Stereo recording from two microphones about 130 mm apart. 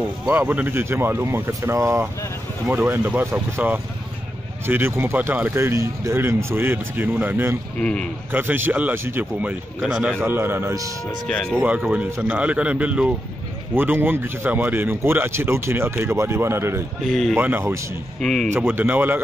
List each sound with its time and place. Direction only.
0.3 s a man's voice: 15° right (ahead or behind)
7.8 s speech: 5° left (ahead or behind)
8.3 s a man's voice: 15° right (ahead or behind)
10.2 s a man's voice: 15° right (ahead or behind)
11.2 s speech: 5° left (ahead or behind)
11.5 s a man's voice: 10° right (ahead or behind)
17.0 s speech: centre (ahead or behind)
17.4 s a man's voice: 15° right (ahead or behind)
18.2 s speech: 5° left (ahead or behind)
18.5 s a man's voice: 15° right (ahead or behind)